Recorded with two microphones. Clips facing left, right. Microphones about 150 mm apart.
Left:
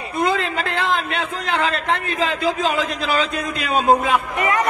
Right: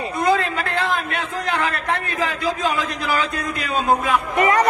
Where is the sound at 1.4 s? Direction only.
20° left (ahead or behind).